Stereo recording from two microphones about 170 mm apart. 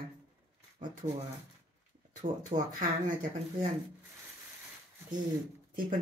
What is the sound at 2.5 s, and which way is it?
Speech, 50° right (ahead or behind).